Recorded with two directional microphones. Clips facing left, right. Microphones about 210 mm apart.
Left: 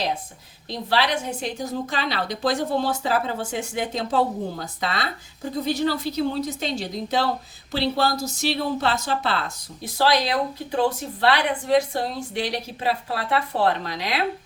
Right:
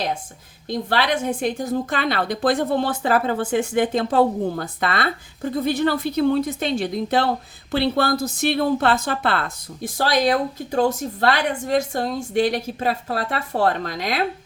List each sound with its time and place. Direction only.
0.7 s a woman's voice: 50° right (ahead or behind)